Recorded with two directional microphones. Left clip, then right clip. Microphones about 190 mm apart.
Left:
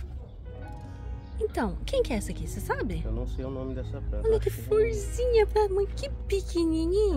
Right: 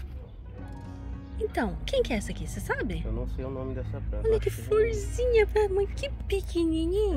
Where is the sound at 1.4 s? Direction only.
Centre (ahead or behind).